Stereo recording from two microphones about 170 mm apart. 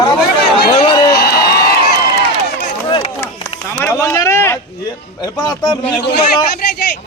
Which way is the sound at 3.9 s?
15° left (ahead or behind).